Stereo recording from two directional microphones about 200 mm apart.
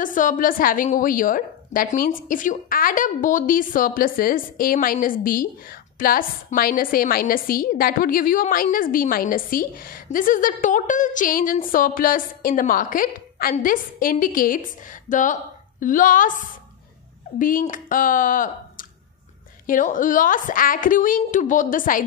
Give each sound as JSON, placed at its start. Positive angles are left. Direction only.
{"t": 0.0, "sound": "a woman's voice", "side_deg": 40}